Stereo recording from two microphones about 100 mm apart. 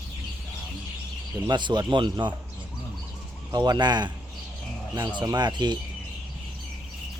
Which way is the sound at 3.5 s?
45° right (ahead or behind).